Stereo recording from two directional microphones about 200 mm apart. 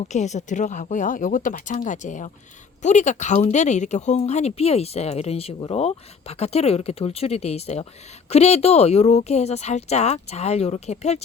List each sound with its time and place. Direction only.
0.0 s speech: 35° left (ahead or behind)